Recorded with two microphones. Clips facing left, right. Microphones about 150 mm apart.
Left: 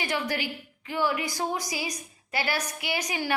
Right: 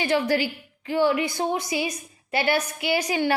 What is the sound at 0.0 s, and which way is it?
A woman's voice, 30° right (ahead or behind).